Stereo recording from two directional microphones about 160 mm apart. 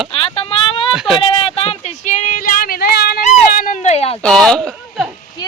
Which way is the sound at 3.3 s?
60° left (ahead or behind).